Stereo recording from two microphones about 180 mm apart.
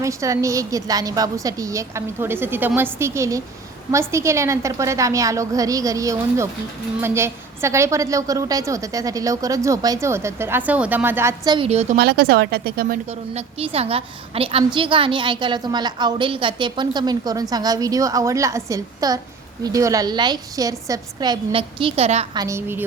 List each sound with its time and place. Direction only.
0.0 s a woman's voice: 15° right (ahead or behind)
11.5 s a woman's voice: 35° right (ahead or behind)
11.9 s speech: 65° right (ahead or behind)
13.3 s a woman's voice: 35° right (ahead or behind)
22.4 s a woman's voice: 15° right (ahead or behind)